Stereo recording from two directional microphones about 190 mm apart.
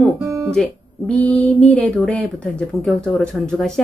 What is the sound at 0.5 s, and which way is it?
A woman's voice, 5° left (ahead or behind).